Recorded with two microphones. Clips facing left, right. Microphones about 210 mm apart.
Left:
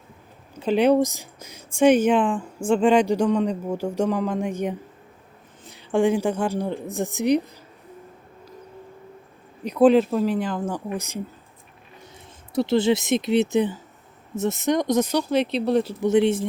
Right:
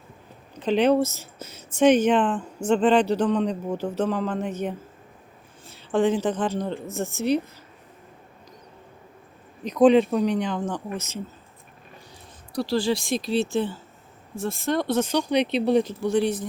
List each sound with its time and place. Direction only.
0.5 s speech: 10° left (ahead or behind)
9.6 s speech: 5° left (ahead or behind)
12.5 s speech: 20° left (ahead or behind); by 15.9 s centre (ahead or behind)
15.9 s speech: 20° left (ahead or behind)